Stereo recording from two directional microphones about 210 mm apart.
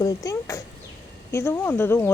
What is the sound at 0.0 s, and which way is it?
Speech, 15° left (ahead or behind).